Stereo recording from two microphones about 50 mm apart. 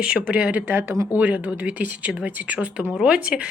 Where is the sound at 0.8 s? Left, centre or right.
Right.